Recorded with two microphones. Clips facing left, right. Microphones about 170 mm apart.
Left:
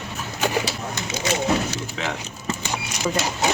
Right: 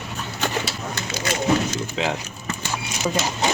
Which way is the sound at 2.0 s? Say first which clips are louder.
Right 5 dB; 20° right (ahead or behind).